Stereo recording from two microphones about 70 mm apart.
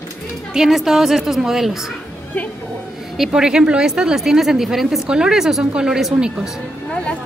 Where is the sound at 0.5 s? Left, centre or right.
Centre.